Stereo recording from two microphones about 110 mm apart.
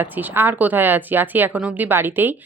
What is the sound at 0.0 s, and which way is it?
Speech, 15° right (ahead or behind).